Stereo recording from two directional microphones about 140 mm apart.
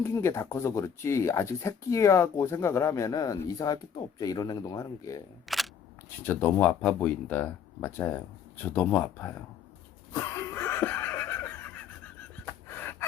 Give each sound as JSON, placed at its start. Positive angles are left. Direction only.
{"t": 0.0, "sound": "speech", "side_deg": 20}
{"t": 5.5, "sound": "single-lens reflex camera", "side_deg": 0}
{"t": 6.2, "sound": "speech", "side_deg": 15}
{"t": 10.1, "sound": "a sound", "side_deg": 20}
{"t": 12.5, "sound": "gasp", "side_deg": 15}